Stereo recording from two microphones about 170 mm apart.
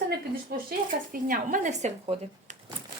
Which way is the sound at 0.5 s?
65° right (ahead or behind).